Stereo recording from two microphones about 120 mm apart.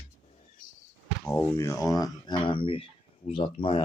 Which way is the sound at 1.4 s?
20° left (ahead or behind).